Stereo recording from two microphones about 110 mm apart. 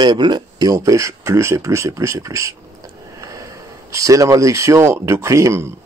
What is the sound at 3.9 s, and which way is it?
Speech, 30° right (ahead or behind).